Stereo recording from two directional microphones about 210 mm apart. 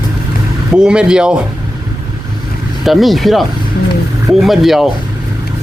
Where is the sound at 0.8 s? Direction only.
5° right (ahead or behind).